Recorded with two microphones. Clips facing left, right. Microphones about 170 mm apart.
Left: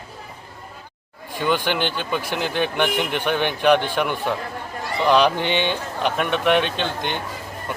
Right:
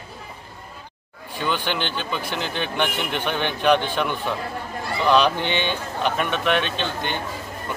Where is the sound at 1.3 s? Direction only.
15° left (ahead or behind).